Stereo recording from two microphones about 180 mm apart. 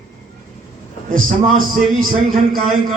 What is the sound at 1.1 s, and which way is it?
Speech, 50° right (ahead or behind).